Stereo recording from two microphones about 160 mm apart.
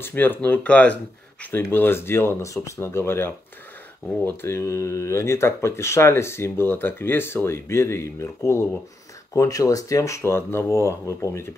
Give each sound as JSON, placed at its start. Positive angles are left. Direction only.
{"t": 0.0, "sound": "speech", "side_deg": 15}
{"t": 4.4, "sound": "speech", "side_deg": 15}